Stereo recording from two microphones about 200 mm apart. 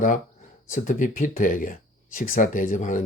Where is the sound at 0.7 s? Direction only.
40° left (ahead or behind).